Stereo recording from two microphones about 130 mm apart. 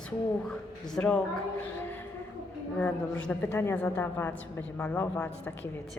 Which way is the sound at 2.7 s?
10° left (ahead or behind).